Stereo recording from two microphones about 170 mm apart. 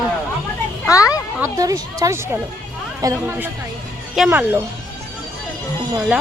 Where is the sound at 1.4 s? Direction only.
20° right (ahead or behind).